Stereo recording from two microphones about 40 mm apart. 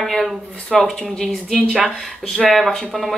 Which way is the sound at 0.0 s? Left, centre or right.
Centre.